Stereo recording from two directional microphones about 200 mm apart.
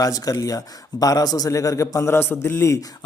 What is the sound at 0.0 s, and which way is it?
Speech, 20° left (ahead or behind).